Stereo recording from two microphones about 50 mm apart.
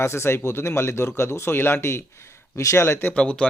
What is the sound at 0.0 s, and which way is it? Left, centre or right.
Speech, left.